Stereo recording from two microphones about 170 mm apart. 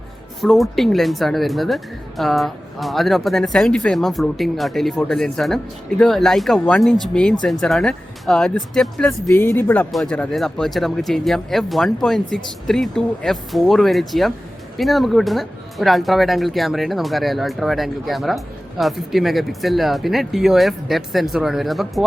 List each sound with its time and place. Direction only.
0.4 s speech: centre (ahead or behind)
9.3 s speech: 15° left (ahead or behind)